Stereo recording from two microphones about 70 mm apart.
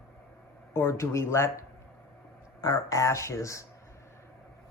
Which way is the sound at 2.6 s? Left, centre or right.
Left.